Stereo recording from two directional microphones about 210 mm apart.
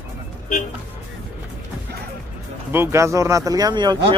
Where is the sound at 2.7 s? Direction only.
10° right (ahead or behind).